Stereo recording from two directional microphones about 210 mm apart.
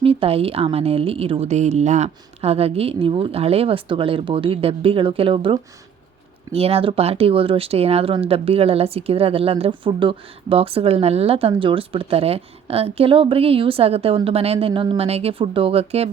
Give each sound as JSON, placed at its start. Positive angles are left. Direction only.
{"t": 0.0, "sound": "speech", "side_deg": -25}